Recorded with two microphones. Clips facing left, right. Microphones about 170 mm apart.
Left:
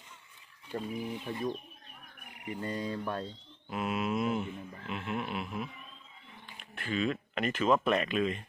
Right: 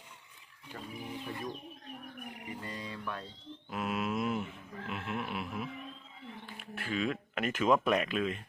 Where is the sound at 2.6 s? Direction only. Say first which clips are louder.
Left 8 dB; 35° left (ahead or behind).